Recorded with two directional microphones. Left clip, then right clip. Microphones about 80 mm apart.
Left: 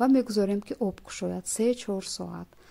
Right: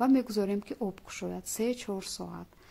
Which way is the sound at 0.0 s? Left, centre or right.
Left.